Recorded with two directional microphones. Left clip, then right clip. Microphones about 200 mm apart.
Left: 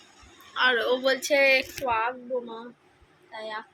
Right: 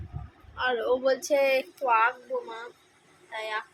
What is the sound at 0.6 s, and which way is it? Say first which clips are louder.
A woman's voice: left 3 dB; centre (ahead or behind).